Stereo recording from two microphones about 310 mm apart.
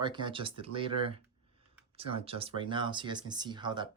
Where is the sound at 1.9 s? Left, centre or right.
Centre.